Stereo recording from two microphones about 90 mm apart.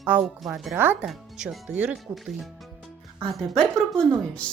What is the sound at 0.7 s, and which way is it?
Speech, 20° right (ahead or behind).